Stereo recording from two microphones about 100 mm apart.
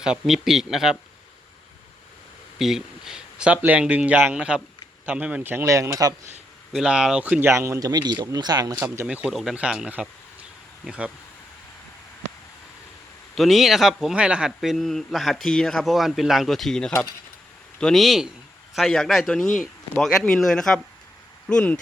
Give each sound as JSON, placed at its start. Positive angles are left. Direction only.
{"t": 0.0, "sound": "speech", "side_deg": -5}
{"t": 2.6, "sound": "speech", "side_deg": -5}
{"t": 5.6, "sound": "speech", "side_deg": -30}
{"t": 6.7, "sound": "speech", "side_deg": -5}
{"t": 7.5, "sound": "speech", "side_deg": -30}
{"t": 7.9, "sound": "speech", "side_deg": -45}
{"t": 9.0, "sound": "speech", "side_deg": -5}
{"t": 13.3, "sound": "speech", "side_deg": 0}